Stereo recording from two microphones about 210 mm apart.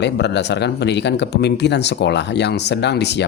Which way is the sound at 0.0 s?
55° left (ahead or behind).